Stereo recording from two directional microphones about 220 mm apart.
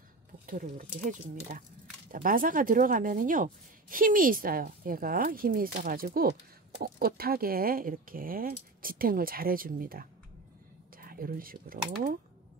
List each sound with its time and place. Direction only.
0.5 s speech: 40° right (ahead or behind)
2.0 s speech: 40° right (ahead or behind)